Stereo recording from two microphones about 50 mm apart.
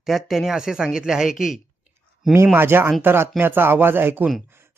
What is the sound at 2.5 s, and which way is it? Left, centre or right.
Speech, right.